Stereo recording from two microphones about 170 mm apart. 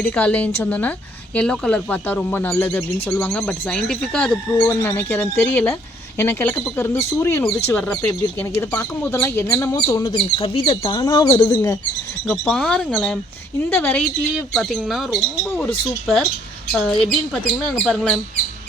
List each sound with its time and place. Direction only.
0.0 s speech: 5° left (ahead or behind)
12.3 s speech: 5° left (ahead or behind)